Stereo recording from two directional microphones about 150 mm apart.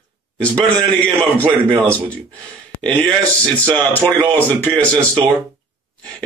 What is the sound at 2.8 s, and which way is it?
A man's voice, 10° left (ahead or behind).